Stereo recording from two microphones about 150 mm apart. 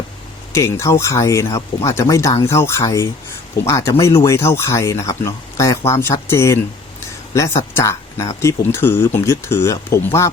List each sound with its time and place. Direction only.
0.5 s speech: 20° left (ahead or behind)
7.8 s speech: 20° left (ahead or behind)